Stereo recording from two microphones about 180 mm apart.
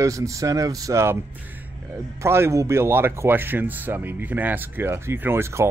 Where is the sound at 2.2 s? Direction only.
15° right (ahead or behind).